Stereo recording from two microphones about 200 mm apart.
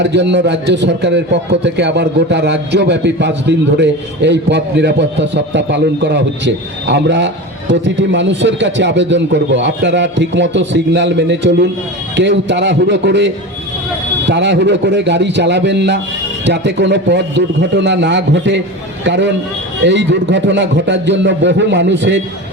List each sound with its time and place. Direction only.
0.0 s a man's voice: 60° right (ahead or behind)